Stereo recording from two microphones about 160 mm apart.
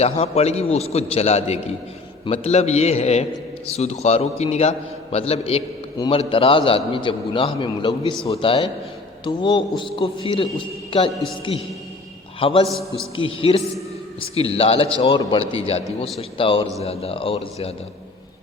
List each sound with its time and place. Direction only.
0.0 s a man's voice: 40° left (ahead or behind)
12.4 s a man's voice: 35° left (ahead or behind)
12.6 s a man's voice: centre (ahead or behind)
13.1 s a man's voice: 35° left (ahead or behind)